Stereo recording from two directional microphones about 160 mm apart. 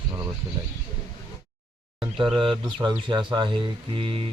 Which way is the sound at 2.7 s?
30° right (ahead or behind).